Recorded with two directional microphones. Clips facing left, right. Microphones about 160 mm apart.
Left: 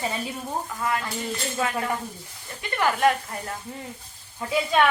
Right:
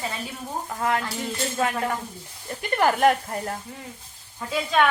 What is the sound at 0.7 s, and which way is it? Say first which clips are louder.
Stir: right 5 dB; 55° right (ahead or behind).